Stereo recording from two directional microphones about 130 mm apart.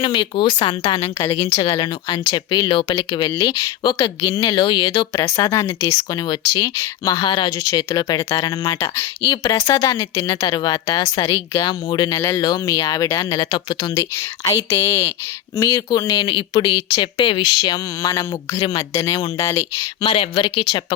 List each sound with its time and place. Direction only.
0.0 s speech: 40° left (ahead or behind)
0.9 s speech: 20° left (ahead or behind)
1.6 s speech: 35° left (ahead or behind)
5.2 s speech: 20° left (ahead or behind)
13.4 s speech: 35° left (ahead or behind)
14.2 s speech: 25° left (ahead or behind)
16.1 s speech: 40° left (ahead or behind)
20.0 s speech: 40° left (ahead or behind)